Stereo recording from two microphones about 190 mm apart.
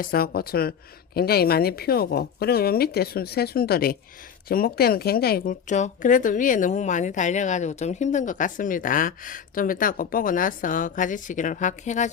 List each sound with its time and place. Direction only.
0.0 s a woman's voice: 55° left (ahead or behind)